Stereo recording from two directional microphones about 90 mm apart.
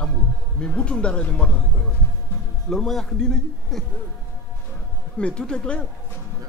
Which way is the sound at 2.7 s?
5° left (ahead or behind).